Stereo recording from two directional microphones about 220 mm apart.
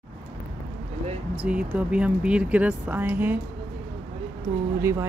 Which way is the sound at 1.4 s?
5° right (ahead or behind).